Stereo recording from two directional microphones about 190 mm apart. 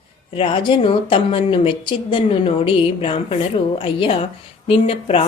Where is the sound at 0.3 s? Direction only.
30° left (ahead or behind).